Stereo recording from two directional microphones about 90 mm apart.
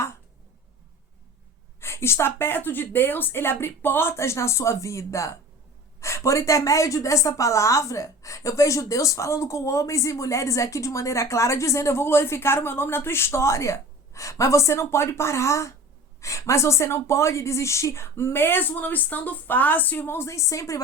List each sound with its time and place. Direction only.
1.8 s a woman's voice: 30° left (ahead or behind)